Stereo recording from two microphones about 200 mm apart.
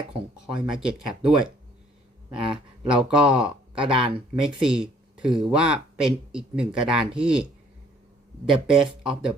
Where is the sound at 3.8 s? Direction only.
25° right (ahead or behind).